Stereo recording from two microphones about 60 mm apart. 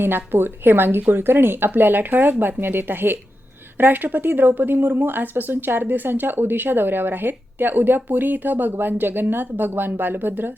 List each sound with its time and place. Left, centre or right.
0.0 s a woman's voice: right